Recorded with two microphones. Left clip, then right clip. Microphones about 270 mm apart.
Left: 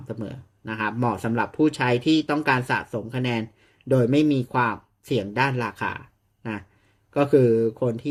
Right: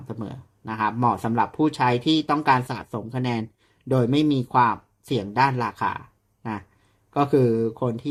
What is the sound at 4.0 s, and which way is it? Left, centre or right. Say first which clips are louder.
Speech: even; centre.